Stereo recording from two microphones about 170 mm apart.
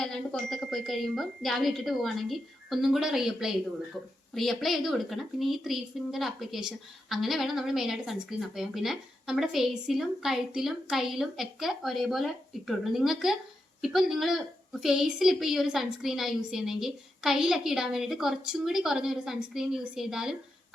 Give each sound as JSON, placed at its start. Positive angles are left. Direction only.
{"t": 0.0, "sound": "a woman's voice", "side_deg": 5}